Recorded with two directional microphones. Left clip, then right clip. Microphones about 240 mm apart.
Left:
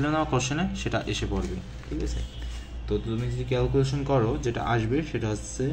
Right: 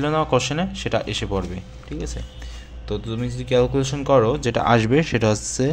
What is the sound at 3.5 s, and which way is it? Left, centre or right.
Speech, right.